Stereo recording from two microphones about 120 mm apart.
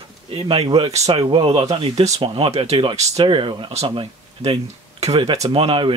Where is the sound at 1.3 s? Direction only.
50° right (ahead or behind).